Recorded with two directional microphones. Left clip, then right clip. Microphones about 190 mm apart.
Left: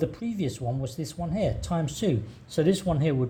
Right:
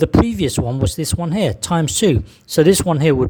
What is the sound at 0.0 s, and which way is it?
Speech, 45° right (ahead or behind).